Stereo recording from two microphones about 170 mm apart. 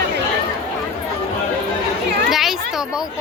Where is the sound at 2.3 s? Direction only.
Centre (ahead or behind).